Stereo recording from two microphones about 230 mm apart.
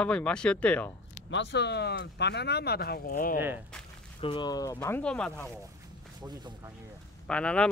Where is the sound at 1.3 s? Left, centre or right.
Left.